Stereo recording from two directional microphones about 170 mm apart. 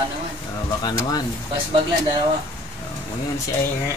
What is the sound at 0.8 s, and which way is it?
Speech, 25° left (ahead or behind).